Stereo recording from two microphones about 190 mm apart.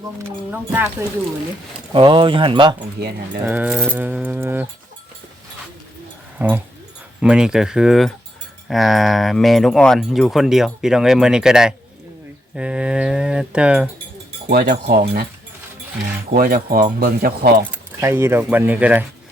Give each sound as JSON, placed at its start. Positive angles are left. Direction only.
{"t": 0.2, "sound": "speech", "side_deg": -10}
{"t": 1.9, "sound": "speech", "side_deg": -25}
{"t": 3.0, "sound": "speech", "side_deg": -55}
{"t": 3.4, "sound": "speech", "side_deg": -10}
{"t": 6.4, "sound": "speech", "side_deg": -10}
{"t": 14.5, "sound": "speech", "side_deg": -55}
{"t": 16.3, "sound": "speech", "side_deg": -50}
{"t": 17.7, "sound": "speech", "side_deg": -10}